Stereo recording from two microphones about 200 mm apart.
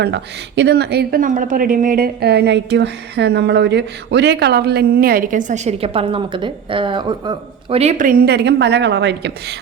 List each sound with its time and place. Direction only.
0.0 s speech: 60° right (ahead or behind)